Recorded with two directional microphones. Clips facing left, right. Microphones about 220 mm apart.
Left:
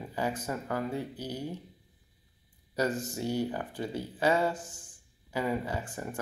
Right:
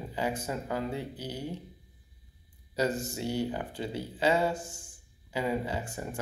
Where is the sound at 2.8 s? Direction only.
10° right (ahead or behind).